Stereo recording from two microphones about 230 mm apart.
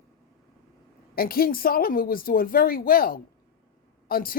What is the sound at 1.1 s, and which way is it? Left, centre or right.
Speech, left.